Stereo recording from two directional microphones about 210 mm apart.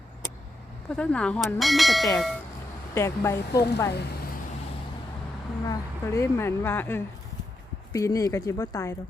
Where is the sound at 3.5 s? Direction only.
50° left (ahead or behind).